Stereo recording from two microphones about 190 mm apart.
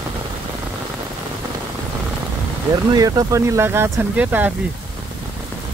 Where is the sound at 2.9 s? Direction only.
20° right (ahead or behind).